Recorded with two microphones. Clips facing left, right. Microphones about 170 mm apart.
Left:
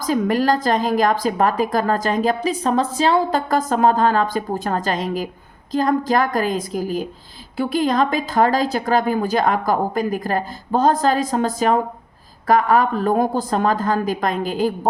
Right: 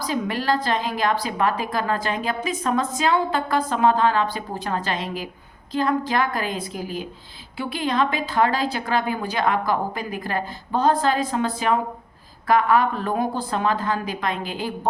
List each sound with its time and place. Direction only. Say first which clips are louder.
0.0 s a woman's voice: left 6 dB; 45° left (ahead or behind)